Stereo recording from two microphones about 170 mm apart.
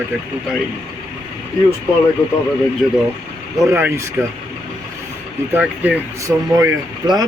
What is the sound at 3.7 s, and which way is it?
Speech, 15° right (ahead or behind).